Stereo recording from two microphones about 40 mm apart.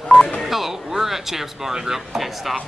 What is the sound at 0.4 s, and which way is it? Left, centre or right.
Speech, centre.